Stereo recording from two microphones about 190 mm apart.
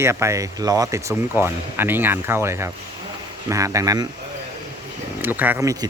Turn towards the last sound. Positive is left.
turn(degrees=-15)  # may be behind; listen again after turning